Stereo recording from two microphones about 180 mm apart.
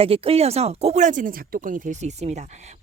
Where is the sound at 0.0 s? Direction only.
30° right (ahead or behind).